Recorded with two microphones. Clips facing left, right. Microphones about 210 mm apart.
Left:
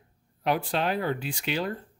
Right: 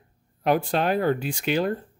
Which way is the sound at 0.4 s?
45° right (ahead or behind).